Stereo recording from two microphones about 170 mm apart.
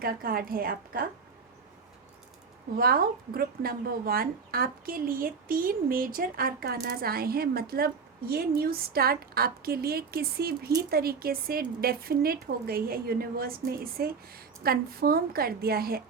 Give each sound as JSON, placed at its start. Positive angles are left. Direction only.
{"t": 0.0, "sound": "speech", "side_deg": -60}
{"t": 2.7, "sound": "speech", "side_deg": -60}